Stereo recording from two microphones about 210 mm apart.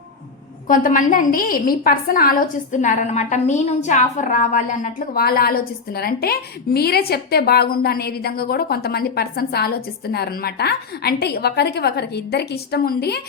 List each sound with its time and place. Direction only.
0.7 s a woman's voice: 40° left (ahead or behind)